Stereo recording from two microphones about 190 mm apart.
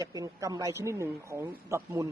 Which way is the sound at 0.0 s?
15° right (ahead or behind).